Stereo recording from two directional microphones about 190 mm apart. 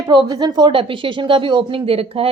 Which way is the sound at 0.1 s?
20° right (ahead or behind).